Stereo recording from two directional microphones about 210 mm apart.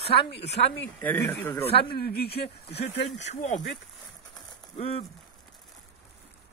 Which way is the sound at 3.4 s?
40° left (ahead or behind).